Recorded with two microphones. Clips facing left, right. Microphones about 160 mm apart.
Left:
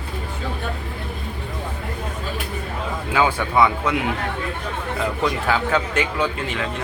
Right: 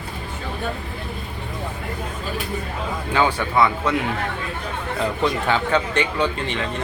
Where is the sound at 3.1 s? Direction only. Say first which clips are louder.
Even; 10° left (ahead or behind).